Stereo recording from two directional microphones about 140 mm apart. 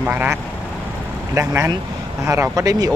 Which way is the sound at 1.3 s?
20° right (ahead or behind).